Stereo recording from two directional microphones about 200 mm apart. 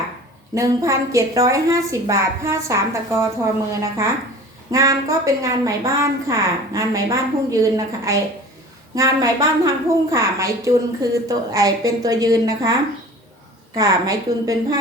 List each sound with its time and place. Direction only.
0.5 s a woman's voice: 15° right (ahead or behind)
4.7 s a woman's voice: 15° right (ahead or behind)
13.7 s a woman's voice: 15° right (ahead or behind)